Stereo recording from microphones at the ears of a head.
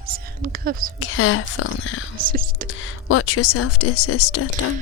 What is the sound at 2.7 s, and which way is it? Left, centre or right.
Speech, left.